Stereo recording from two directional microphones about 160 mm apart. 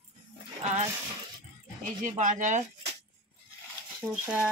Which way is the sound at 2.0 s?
50° right (ahead or behind).